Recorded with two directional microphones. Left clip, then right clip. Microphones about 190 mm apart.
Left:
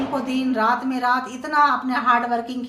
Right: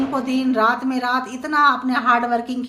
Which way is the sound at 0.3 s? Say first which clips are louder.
Right 2 dB; 30° right (ahead or behind).